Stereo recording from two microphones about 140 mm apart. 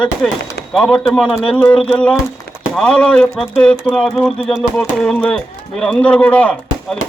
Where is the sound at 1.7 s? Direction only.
40° left (ahead or behind).